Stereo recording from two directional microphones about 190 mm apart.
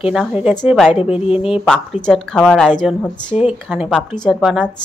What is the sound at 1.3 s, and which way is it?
Speech, 30° left (ahead or behind).